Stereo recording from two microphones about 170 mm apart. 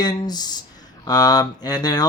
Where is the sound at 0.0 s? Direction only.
25° left (ahead or behind).